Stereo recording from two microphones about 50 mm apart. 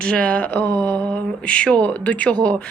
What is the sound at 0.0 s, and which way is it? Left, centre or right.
Speech, left.